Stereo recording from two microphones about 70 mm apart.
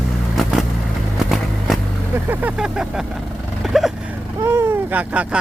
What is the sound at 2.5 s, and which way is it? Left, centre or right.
Vehicle, centre.